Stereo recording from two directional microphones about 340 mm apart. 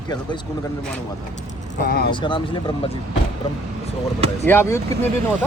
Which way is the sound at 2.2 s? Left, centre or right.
Centre.